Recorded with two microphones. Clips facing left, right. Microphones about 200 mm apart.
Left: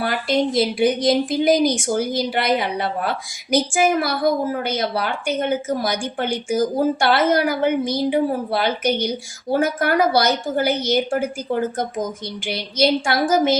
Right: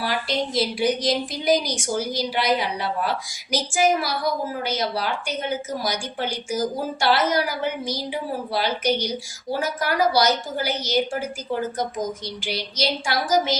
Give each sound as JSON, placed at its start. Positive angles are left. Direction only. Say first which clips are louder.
{"t": 0.0, "sound": "a woman's voice", "louder": "left 5 dB", "side_deg": 55}